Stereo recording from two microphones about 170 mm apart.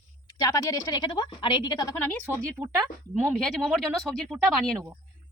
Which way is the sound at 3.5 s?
5° left (ahead or behind).